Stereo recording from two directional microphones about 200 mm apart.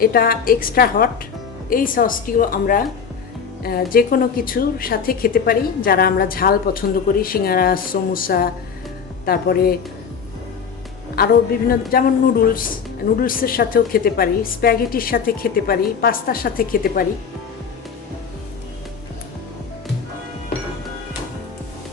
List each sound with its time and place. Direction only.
0.0 s a woman's voice: 45° left (ahead or behind)
11.7 s a woman's voice: 45° left (ahead or behind)